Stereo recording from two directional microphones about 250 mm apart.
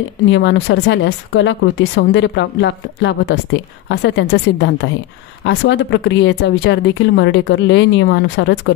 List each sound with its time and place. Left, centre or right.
0.3 s speech: left